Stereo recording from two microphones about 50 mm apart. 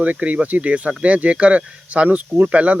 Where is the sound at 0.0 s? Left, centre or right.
Right.